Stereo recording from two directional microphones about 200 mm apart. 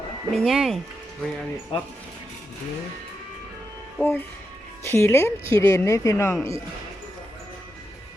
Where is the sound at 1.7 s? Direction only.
25° left (ahead or behind).